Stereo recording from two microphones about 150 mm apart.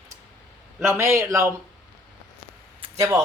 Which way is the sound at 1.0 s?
15° right (ahead or behind).